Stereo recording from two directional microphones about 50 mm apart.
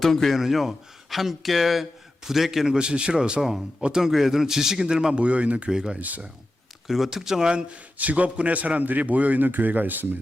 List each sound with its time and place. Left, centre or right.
0.0 s speech: centre
3.4 s speech: centre
5.2 s speech: right
5.7 s speech: centre
6.0 s a man's voice: right
6.8 s speech: centre
7.5 s a man's voice: right